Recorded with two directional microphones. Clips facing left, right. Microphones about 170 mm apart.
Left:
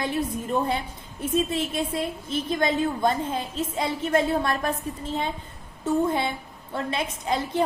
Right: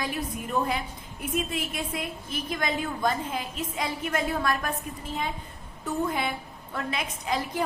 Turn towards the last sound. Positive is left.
turn(degrees=30)  # may be behind; listen again after turning